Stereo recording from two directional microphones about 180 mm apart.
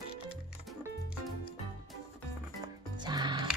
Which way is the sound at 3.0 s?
25° right (ahead or behind).